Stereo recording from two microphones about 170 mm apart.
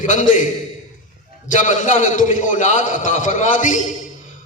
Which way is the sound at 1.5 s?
45° left (ahead or behind).